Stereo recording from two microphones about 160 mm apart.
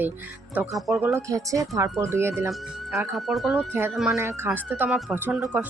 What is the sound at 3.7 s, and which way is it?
Speech, 15° right (ahead or behind).